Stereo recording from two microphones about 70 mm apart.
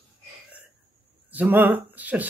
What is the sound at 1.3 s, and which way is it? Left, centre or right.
Speech, right.